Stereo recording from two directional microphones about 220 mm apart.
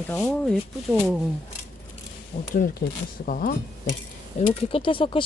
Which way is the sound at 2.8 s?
40° left (ahead or behind).